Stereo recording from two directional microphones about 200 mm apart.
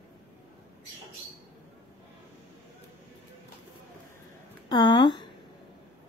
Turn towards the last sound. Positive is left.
turn(degrees=20)  # may be behind; listen again after turning